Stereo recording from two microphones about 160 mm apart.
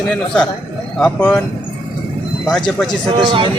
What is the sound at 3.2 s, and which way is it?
Speech, 35° right (ahead or behind).